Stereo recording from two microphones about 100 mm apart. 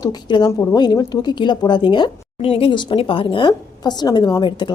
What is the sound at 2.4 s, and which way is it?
Speech, 75° left (ahead or behind).